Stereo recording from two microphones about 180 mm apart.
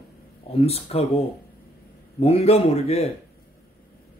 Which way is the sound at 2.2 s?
35° left (ahead or behind).